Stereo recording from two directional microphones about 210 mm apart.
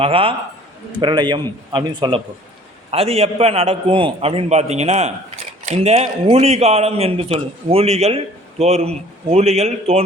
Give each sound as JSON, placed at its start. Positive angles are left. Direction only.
{"t": 0.0, "sound": "a man's voice", "side_deg": -25}